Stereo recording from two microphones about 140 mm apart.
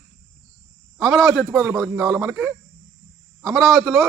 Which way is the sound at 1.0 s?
Centre (ahead or behind).